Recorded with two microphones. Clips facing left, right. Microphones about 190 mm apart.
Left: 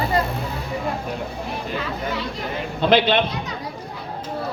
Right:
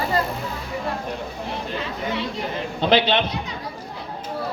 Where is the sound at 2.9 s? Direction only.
55° left (ahead or behind).